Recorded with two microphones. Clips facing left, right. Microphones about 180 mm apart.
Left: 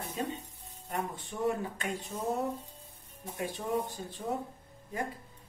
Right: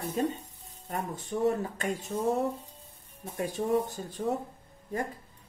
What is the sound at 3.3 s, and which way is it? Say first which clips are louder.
Speech: right 5 dB; 45° right (ahead or behind).